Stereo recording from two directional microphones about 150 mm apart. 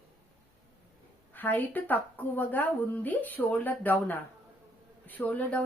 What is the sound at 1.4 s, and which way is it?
Speech, 10° left (ahead or behind).